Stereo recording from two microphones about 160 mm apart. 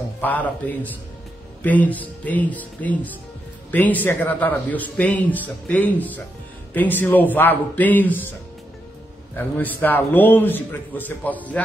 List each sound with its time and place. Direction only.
0.2 s speech: 10° left (ahead or behind)
9.3 s speech: 10° left (ahead or behind)